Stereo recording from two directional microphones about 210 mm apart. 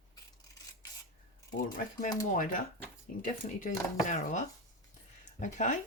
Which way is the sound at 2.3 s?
40° left (ahead or behind).